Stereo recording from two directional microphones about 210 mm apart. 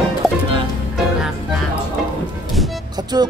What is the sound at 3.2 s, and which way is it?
Music, 20° right (ahead or behind).